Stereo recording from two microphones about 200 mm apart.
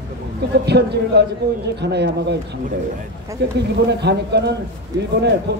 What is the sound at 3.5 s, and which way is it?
A man's voice, 55° right (ahead or behind).